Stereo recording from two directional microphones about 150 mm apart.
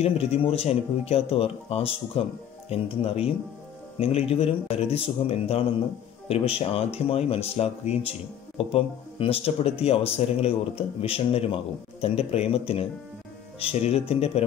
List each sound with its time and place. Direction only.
0.0 s speech: 40° left (ahead or behind)